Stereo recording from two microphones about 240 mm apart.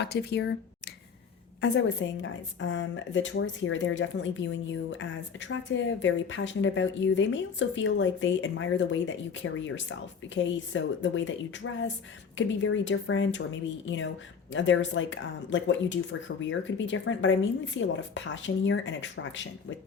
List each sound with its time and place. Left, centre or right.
0.0 s a woman's voice: left
1.6 s a woman's voice: left
12.4 s a woman's voice: left